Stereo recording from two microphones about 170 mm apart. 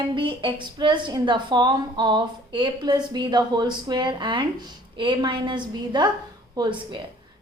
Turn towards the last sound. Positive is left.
turn(degrees=-25)  # may be behind; listen again after turning